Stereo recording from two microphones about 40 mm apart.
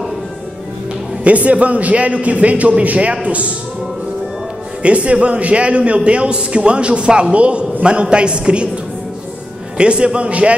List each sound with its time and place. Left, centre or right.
1.2 s a man's voice: right
4.8 s a man's voice: right
9.8 s a man's voice: right